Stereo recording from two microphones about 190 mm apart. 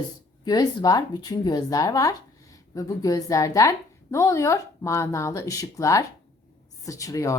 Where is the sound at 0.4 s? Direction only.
20° left (ahead or behind).